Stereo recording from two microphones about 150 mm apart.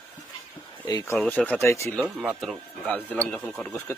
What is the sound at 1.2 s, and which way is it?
Speech, 10° left (ahead or behind).